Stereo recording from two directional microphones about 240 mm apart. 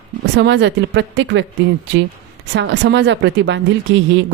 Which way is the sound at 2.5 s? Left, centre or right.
Right.